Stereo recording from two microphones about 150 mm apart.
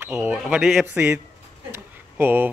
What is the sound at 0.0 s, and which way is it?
Speech, 15° right (ahead or behind).